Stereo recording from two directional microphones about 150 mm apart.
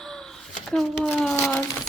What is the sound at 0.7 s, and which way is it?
Speech, centre (ahead or behind).